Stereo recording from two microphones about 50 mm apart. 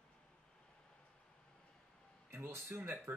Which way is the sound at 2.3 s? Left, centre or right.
Right.